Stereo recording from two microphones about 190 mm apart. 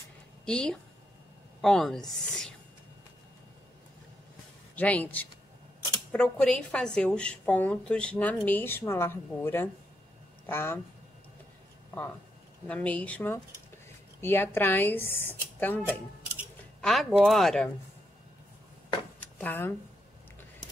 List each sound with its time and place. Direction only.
0.5 s a woman's voice: 5° left (ahead or behind)
4.7 s a woman's voice: 10° left (ahead or behind)
12.6 s speech: 5° left (ahead or behind)
16.8 s a woman's voice: centre (ahead or behind)
19.1 s a sound: 10° left (ahead or behind)